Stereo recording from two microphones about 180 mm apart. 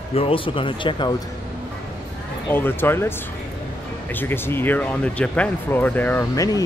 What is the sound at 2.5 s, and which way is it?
Speech, 10° left (ahead or behind).